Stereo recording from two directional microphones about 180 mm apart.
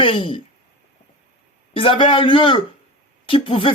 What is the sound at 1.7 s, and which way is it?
A man's voice, 30° left (ahead or behind).